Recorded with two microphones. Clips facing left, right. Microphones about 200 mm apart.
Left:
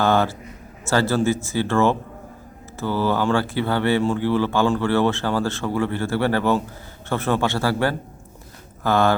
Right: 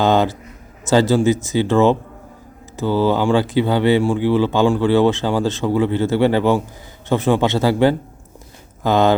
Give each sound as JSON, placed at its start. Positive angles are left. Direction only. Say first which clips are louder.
{"t": 0.0, "sound": "a man's voice", "louder": "right 3 dB", "side_deg": -20}